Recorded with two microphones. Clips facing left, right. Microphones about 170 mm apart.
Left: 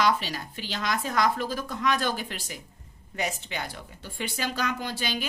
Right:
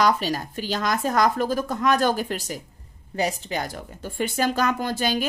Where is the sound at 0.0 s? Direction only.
45° right (ahead or behind).